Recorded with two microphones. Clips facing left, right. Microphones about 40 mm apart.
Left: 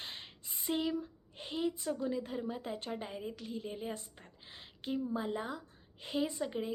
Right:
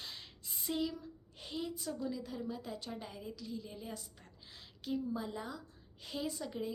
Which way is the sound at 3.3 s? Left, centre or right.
Left.